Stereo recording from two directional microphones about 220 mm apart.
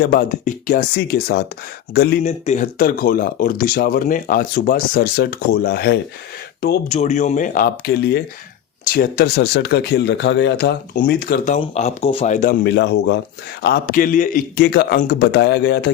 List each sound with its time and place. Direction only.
0.0 s speech: 45° left (ahead or behind)
2.2 s speech: 35° left (ahead or behind)
6.9 s speech: 30° left (ahead or behind)
11.5 s speech: 30° left (ahead or behind)
12.6 s speech: 50° left (ahead or behind)